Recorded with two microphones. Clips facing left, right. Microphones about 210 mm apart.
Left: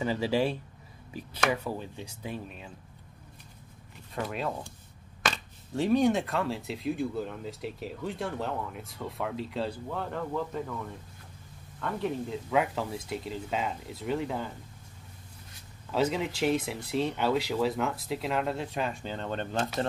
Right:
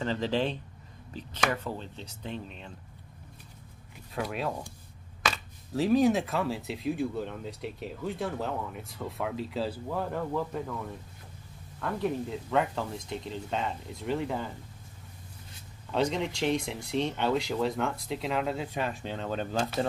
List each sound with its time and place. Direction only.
0.0 s speech: 10° left (ahead or behind)
4.1 s speech: centre (ahead or behind)
15.9 s speech: 5° left (ahead or behind)